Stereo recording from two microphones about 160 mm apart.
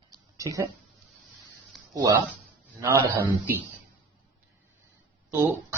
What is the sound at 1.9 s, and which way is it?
Speech, 25° right (ahead or behind).